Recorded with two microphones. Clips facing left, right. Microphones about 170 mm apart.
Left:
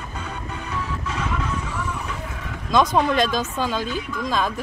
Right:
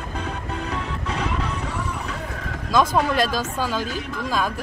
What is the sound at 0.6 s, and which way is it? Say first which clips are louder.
Music: left 2 dB; 35° right (ahead or behind).